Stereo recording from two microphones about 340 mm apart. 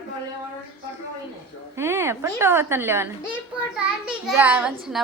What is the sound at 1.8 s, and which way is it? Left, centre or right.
A woman's voice, centre.